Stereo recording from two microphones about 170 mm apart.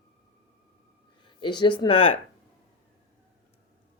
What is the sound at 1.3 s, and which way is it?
Speech, 25° left (ahead or behind).